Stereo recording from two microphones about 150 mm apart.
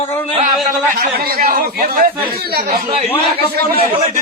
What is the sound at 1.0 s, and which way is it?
Speech, 90° right.